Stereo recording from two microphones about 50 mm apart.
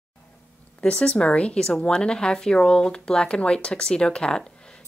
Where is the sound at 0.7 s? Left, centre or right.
Left.